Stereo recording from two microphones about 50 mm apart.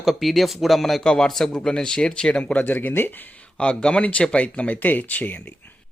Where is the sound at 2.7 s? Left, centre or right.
Left.